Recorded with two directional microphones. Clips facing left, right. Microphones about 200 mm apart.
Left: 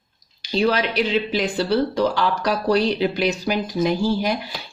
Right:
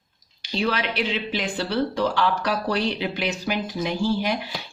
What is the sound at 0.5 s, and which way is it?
Speech, 40° left (ahead or behind).